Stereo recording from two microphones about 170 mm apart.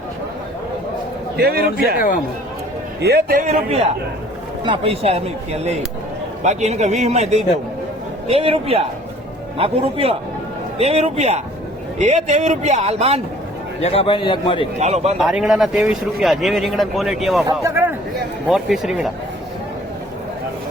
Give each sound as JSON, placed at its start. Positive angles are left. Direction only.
{"t": 1.4, "sound": "a man's voice", "side_deg": -70}
{"t": 3.0, "sound": "a man's voice", "side_deg": -70}
{"t": 4.6, "sound": "a man's voice", "side_deg": -30}
{"t": 13.8, "sound": "a man's voice", "side_deg": 35}
{"t": 14.8, "sound": "a man's voice", "side_deg": -40}
{"t": 15.2, "sound": "speech", "side_deg": -5}
{"t": 17.4, "sound": "a man's voice", "side_deg": -15}
{"t": 18.4, "sound": "speech", "side_deg": 0}